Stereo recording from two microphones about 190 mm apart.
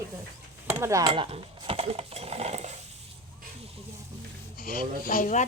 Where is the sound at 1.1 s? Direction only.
30° right (ahead or behind).